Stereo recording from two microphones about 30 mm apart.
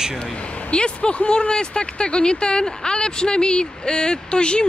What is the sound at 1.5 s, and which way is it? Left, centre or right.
Speech, left.